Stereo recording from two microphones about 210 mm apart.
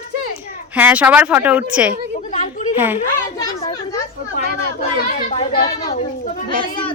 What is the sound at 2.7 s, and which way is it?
Speech, 10° right (ahead or behind).